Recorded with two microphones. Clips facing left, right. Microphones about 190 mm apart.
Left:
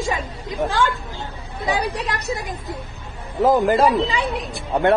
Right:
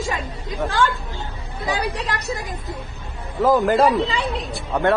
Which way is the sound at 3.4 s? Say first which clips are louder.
Even; 20° left (ahead or behind).